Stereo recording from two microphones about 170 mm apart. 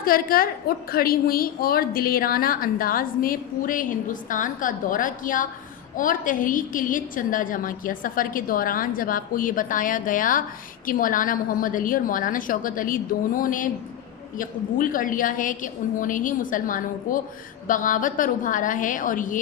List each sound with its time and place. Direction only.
0.0 s a woman's voice: 60° left (ahead or behind)